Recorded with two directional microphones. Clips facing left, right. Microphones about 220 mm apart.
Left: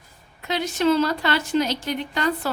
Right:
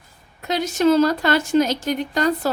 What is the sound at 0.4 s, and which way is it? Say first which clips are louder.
A woman's voice: right 3 dB; 45° right (ahead or behind).